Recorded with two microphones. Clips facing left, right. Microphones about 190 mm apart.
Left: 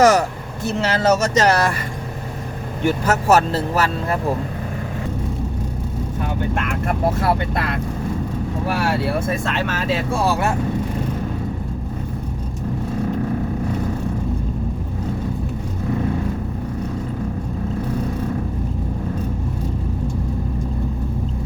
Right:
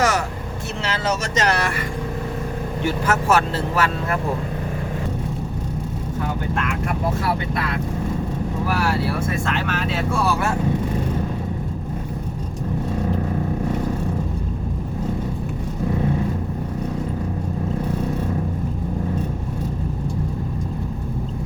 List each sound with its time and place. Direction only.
0.0 s vehicle: 40° left (ahead or behind)
0.8 s speech: 40° left (ahead or behind)
2.8 s speech: 40° left (ahead or behind)
7.2 s speech: 50° left (ahead or behind)